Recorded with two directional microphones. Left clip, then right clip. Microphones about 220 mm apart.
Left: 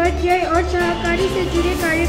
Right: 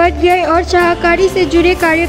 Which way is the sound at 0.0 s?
50° right (ahead or behind).